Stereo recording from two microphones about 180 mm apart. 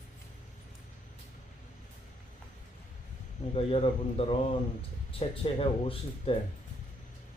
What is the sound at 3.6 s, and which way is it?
Speech, 30° left (ahead or behind).